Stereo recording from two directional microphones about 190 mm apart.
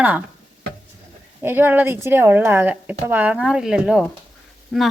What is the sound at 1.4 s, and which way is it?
Speech, 10° right (ahead or behind).